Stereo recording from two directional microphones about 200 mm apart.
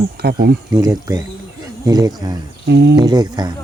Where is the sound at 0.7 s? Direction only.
20° right (ahead or behind).